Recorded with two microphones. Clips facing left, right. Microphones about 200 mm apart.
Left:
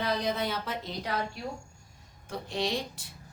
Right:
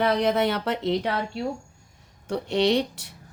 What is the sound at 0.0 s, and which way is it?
Speech, 70° right (ahead or behind).